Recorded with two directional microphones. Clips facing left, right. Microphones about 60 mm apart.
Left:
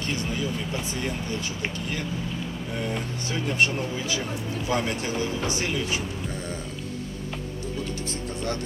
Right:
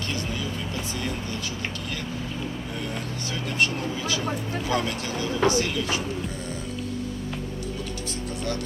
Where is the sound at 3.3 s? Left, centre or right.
Left.